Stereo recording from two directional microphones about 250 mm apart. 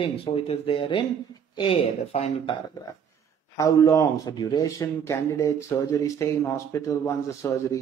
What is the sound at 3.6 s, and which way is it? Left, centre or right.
A man's voice, centre.